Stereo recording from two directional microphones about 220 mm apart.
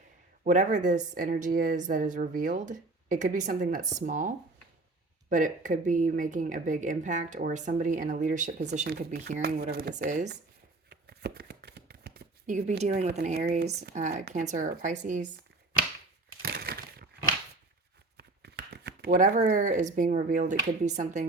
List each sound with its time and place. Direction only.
0.4 s a woman's voice: 35° right (ahead or behind)
10.8 s shuffling cards: 45° right (ahead or behind)
13.1 s speech: 45° right (ahead or behind)
13.9 s a woman's voice: 35° right (ahead or behind)
16.4 s crushing: 45° right (ahead or behind)
18.2 s speech: 50° right (ahead or behind); by 21.2 s 30° right (ahead or behind)